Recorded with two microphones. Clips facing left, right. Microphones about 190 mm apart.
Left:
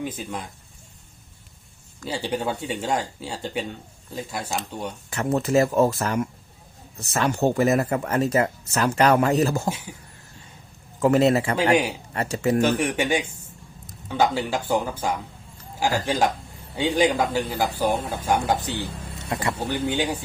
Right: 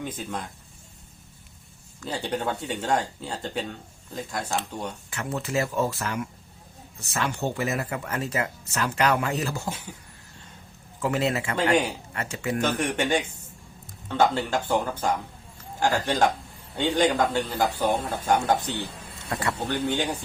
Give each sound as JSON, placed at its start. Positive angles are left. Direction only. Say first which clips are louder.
{"t": 0.0, "sound": "speech", "louder": "left 2 dB", "side_deg": 5}
{"t": 2.0, "sound": "speech", "louder": "left 2 dB", "side_deg": 10}
{"t": 5.1, "sound": "speech", "louder": "left 8 dB", "side_deg": 45}
{"t": 11.0, "sound": "speech", "louder": "left 7 dB", "side_deg": 40}
{"t": 12.6, "sound": "speech", "louder": "left 3 dB", "side_deg": 10}
{"t": 19.3, "sound": "speech", "louder": "left 2 dB", "side_deg": 20}
{"t": 19.6, "sound": "speech", "louder": "left 1 dB", "side_deg": 10}